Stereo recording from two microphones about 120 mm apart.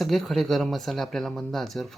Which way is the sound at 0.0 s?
Centre (ahead or behind).